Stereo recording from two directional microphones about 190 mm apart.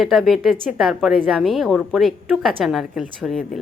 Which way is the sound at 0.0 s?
Centre (ahead or behind).